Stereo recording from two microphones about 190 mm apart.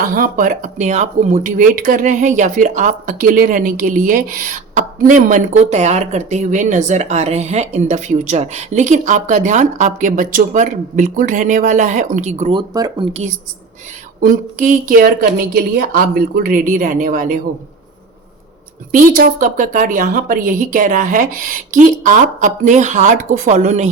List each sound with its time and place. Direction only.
0.0 s speech: 45° right (ahead or behind)
12.5 s speech: 20° right (ahead or behind)
14.2 s a woman's voice: 45° right (ahead or behind)
18.9 s a woman's voice: 45° right (ahead or behind)